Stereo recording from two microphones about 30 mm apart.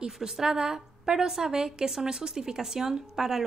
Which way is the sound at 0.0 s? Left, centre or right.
Right.